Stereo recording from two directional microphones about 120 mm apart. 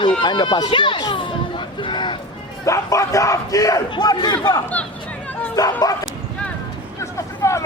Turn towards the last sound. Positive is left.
turn(degrees=25)  # may be behind; listen again after turning